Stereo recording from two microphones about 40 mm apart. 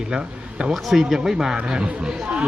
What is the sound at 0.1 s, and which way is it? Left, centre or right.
Speech, right.